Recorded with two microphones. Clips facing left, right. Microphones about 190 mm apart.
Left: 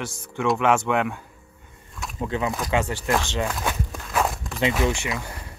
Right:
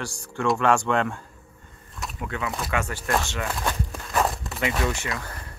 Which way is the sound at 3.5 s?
Centre (ahead or behind).